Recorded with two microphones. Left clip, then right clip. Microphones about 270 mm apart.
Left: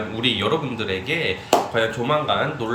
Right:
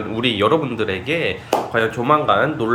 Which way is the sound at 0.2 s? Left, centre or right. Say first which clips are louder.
Right 5 dB; centre.